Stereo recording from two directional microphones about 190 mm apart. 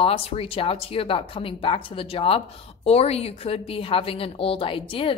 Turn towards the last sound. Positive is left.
turn(degrees=30)  # may be behind; listen again after turning